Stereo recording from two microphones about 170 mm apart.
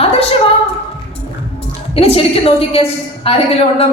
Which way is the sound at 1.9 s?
35° left (ahead or behind).